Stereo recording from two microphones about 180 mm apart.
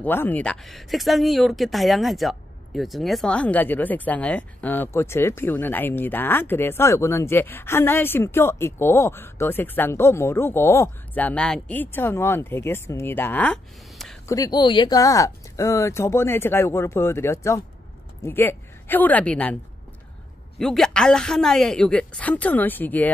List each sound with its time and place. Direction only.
0.0 s speech: 10° left (ahead or behind)
14.2 s a woman's voice: 20° left (ahead or behind)
20.5 s a woman's voice: 5° left (ahead or behind)